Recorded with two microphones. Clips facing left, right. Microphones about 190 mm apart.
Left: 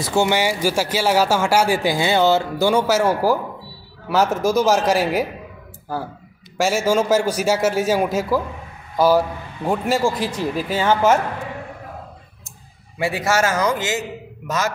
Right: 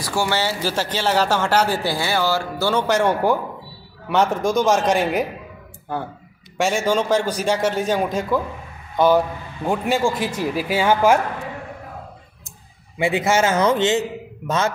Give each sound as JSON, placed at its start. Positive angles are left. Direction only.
{"t": 0.0, "sound": "speech", "side_deg": 20}
{"t": 2.7, "sound": "a man's voice", "side_deg": 5}
{"t": 6.6, "sound": "a man's voice", "side_deg": 5}
{"t": 13.0, "sound": "speech", "side_deg": -20}